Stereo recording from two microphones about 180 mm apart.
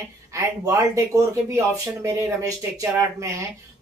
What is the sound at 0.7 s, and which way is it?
Speech, 15° right (ahead or behind).